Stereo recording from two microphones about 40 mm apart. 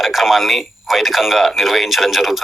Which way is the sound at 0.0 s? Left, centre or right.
Centre.